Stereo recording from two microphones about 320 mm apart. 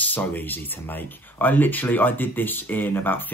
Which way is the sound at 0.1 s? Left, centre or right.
Centre.